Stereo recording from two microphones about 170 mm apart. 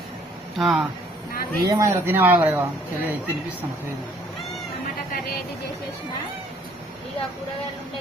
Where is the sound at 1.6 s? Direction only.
20° right (ahead or behind).